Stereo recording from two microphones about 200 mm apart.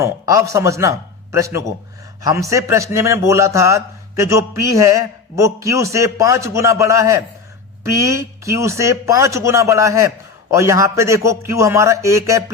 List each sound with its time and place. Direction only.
0.0 s a man's voice: 15° right (ahead or behind)